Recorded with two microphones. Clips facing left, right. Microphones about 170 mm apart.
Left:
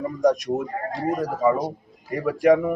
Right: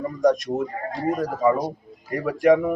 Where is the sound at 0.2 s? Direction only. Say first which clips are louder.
Right 1 dB; 10° left (ahead or behind).